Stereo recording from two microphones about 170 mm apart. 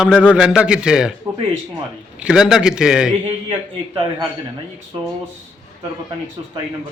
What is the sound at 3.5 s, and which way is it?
Speech, 25° right (ahead or behind).